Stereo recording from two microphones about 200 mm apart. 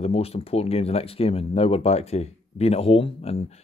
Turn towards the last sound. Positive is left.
turn(degrees=30)  # may be behind; listen again after turning